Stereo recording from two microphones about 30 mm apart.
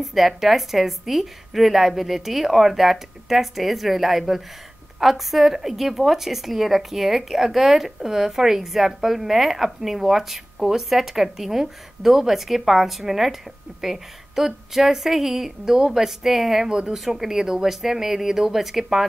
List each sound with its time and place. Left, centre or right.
0.0 s a woman's voice: centre
16.6 s a woman's voice: right
16.9 s speech: centre